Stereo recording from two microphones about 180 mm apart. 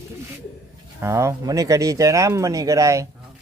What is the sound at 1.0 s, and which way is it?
A man's voice, 15° right (ahead or behind).